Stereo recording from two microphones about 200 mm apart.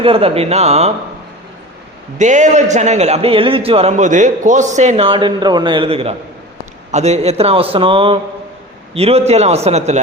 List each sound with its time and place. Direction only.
0.0 s a man's voice: 30° right (ahead or behind)
2.1 s a man's voice: 35° right (ahead or behind)